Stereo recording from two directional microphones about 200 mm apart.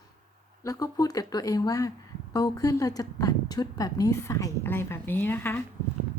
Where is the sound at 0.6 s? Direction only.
15° left (ahead or behind).